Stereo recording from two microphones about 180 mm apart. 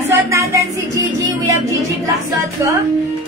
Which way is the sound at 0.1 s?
15° right (ahead or behind).